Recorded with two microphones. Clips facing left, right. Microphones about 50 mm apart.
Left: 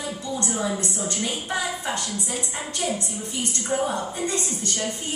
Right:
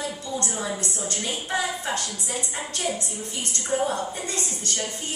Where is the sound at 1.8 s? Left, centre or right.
Left.